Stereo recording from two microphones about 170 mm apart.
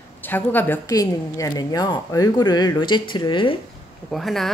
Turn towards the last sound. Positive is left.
turn(degrees=0)  # may be behind; listen again after turning